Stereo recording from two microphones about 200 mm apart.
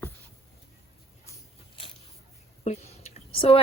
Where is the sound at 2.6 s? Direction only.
30° left (ahead or behind).